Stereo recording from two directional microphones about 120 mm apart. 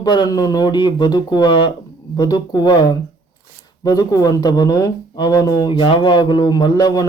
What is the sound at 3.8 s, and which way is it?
Speech, 30° left (ahead or behind).